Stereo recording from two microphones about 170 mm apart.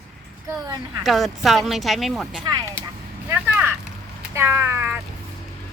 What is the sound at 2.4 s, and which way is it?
Speech, 25° right (ahead or behind).